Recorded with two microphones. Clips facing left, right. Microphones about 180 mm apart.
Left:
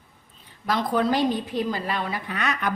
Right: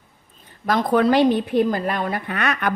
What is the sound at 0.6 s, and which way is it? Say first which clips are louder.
A woman's voice: right 5 dB; 50° right (ahead or behind).